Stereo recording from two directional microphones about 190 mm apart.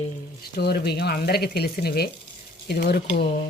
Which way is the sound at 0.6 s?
55° left (ahead or behind).